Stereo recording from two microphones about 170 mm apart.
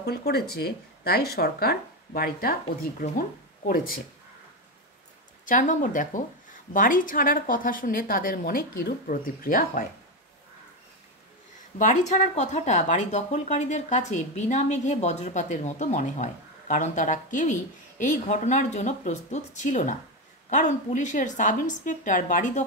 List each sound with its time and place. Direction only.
0.0 s speech: 70° left (ahead or behind)
5.4 s speech: 50° left (ahead or behind)
11.8 s speech: 45° left (ahead or behind)